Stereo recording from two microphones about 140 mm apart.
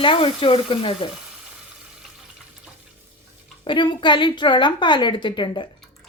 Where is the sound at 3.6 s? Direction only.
35° left (ahead or behind).